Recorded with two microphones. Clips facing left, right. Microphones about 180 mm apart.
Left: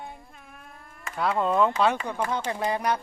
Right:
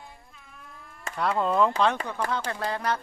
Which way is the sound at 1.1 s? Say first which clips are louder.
Left 1 dB; centre (ahead or behind).